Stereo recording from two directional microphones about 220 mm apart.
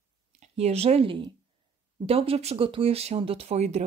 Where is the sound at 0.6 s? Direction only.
30° right (ahead or behind).